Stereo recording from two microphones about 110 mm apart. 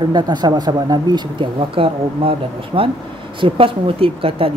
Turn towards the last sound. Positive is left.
turn(degrees=-55)  # may be behind; listen again after turning